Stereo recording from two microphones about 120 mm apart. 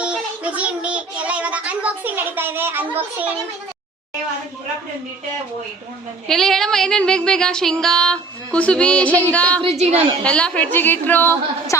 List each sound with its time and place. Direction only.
0.0 s child singing: 10° right (ahead or behind)
6.2 s female singing: 5° left (ahead or behind)
8.5 s a woman's voice: 10° left (ahead or behind)
9.7 s a woman's voice: 60° right (ahead or behind)
10.2 s a woman's voice: 10° left (ahead or behind)